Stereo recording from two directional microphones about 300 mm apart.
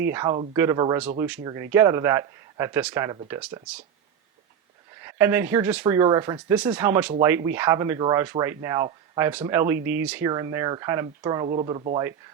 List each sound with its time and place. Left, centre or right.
0.0 s speech: centre
5.0 s speech: centre